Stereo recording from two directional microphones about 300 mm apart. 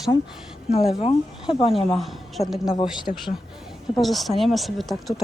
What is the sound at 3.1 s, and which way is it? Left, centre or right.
Speech, left.